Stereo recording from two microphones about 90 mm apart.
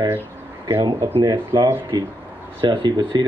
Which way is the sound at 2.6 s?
65° right (ahead or behind).